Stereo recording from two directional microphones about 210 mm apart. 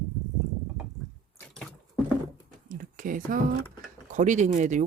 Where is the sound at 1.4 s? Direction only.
5° left (ahead or behind).